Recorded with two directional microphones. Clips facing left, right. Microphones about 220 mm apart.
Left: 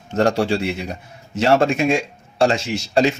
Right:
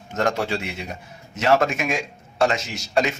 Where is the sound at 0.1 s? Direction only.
30° left (ahead or behind).